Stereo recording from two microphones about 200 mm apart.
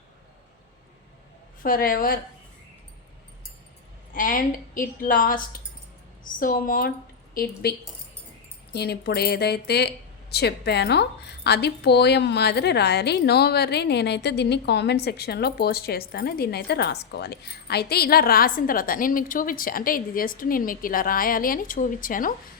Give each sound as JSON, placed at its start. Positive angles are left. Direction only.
{"t": 1.6, "sound": "speech", "side_deg": 45}
{"t": 4.1, "sound": "speech", "side_deg": 45}